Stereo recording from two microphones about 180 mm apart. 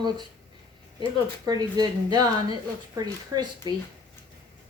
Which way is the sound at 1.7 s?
20° right (ahead or behind).